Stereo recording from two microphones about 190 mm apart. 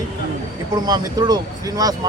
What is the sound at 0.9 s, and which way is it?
Speech, 20° right (ahead or behind).